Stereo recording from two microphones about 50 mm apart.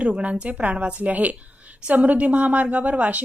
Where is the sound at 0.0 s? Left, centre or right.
Right.